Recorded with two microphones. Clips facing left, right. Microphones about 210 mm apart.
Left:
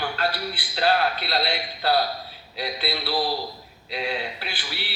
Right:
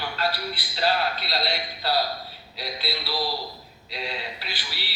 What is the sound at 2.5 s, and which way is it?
Speech, 55° left (ahead or behind).